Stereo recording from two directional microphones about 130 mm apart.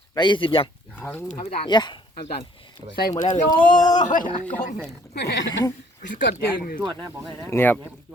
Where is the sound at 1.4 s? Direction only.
40° left (ahead or behind).